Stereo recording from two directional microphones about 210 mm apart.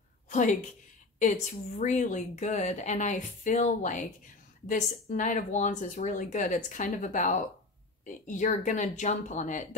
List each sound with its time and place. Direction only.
0.3 s a woman's voice: 35° left (ahead or behind)
1.8 s speech: 35° left (ahead or behind)